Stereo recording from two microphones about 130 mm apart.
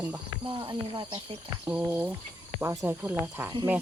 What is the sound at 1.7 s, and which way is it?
Speech, 15° right (ahead or behind).